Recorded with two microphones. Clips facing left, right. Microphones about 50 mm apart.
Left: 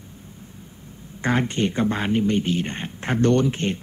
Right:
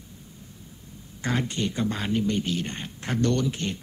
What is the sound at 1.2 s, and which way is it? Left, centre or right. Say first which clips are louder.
Speech: left 5 dB; left.